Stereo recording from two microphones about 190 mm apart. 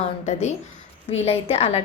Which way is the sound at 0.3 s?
35° left (ahead or behind).